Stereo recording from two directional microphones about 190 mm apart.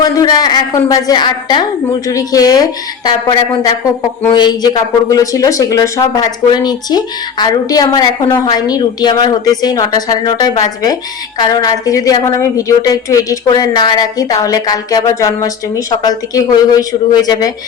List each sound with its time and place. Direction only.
0.0 s speech: 20° left (ahead or behind)